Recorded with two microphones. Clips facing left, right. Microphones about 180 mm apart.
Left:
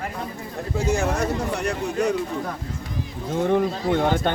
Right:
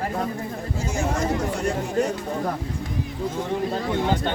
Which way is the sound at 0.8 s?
65° left (ahead or behind).